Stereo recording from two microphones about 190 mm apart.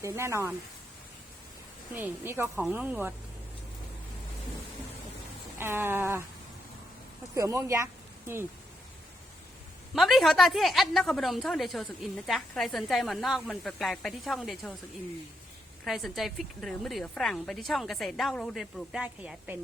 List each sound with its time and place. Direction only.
0.0 s speech: 15° right (ahead or behind)
2.0 s speech: 10° right (ahead or behind)
5.5 s speech: 10° right (ahead or behind)
7.3 s speech: 15° right (ahead or behind)
9.9 s a woman's voice: centre (ahead or behind)
15.8 s a woman's voice: centre (ahead or behind)